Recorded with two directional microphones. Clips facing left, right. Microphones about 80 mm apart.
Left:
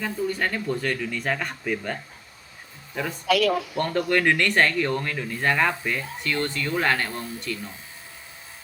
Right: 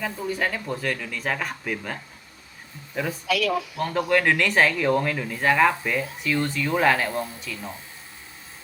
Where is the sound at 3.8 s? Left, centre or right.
Centre.